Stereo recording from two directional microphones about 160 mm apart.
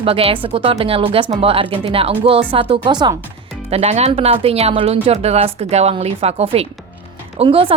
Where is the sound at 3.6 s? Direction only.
40° right (ahead or behind).